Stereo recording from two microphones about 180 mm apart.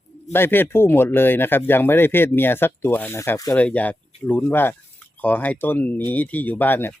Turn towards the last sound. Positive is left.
turn(degrees=10)  # may be behind; listen again after turning